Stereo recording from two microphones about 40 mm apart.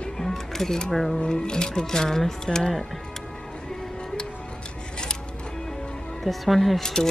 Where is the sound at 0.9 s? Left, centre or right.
Centre.